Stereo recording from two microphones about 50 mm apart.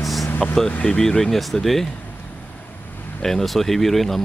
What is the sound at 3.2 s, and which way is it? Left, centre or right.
Speech, centre.